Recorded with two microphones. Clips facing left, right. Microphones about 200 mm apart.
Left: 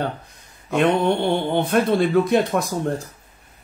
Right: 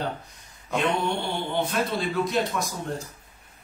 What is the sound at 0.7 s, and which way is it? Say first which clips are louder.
Speech: left 7 dB; 60° left (ahead or behind).